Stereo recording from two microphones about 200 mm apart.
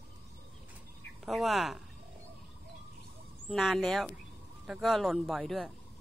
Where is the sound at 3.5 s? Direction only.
Centre (ahead or behind).